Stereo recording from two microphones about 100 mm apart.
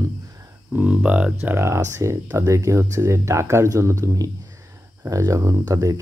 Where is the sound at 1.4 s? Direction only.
25° right (ahead or behind).